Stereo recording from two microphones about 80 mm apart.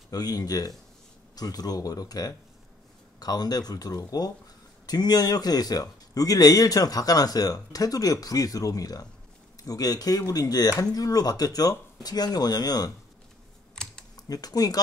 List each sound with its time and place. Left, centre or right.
0.1 s a man's voice: left
13.8 s typing: centre
14.1 s speech: left